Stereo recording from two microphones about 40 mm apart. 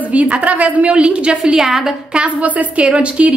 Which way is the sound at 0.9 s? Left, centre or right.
Right.